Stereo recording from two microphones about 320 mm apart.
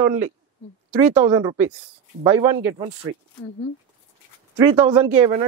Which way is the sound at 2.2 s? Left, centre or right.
Centre.